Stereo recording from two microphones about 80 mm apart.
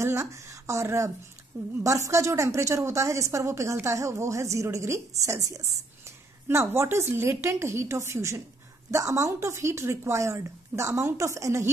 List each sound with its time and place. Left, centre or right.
0.0 s a woman's voice: right
6.4 s a woman's voice: right